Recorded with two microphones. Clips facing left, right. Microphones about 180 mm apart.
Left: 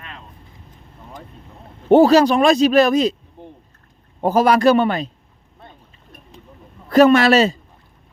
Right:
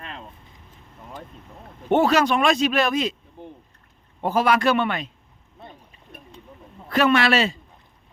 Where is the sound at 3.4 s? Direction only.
Centre (ahead or behind).